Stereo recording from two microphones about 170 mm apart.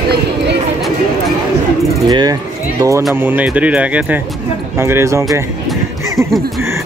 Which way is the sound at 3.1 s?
10° right (ahead or behind).